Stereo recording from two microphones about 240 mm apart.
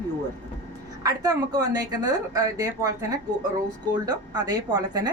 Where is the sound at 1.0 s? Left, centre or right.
Centre.